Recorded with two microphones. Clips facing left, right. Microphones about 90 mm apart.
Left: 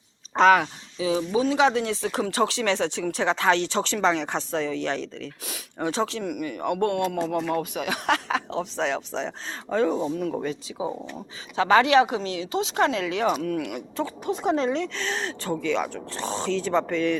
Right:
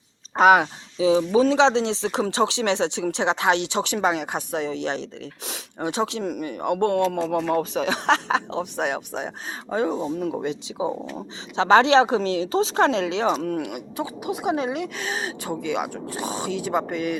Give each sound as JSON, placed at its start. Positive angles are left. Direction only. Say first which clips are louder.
{"t": 0.3, "sound": "speech", "louder": "right 2 dB", "side_deg": -15}
{"t": 0.6, "sound": "speech", "louder": "right 6 dB", "side_deg": -25}
{"t": 6.2, "sound": "speech", "louder": "right 2 dB", "side_deg": -30}
{"t": 13.7, "sound": "speech", "louder": "even", "side_deg": -10}